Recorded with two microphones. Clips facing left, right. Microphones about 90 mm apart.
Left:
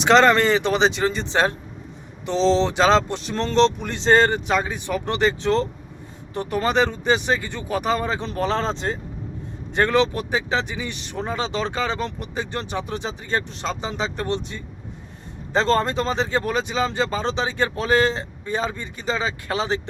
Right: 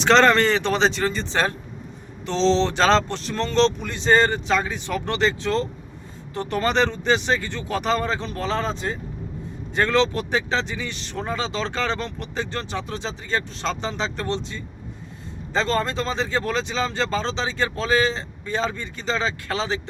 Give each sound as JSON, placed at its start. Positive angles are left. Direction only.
{"t": 0.0, "sound": "speech", "side_deg": 10}
{"t": 6.3, "sound": "speech", "side_deg": 10}
{"t": 15.5, "sound": "speech", "side_deg": 25}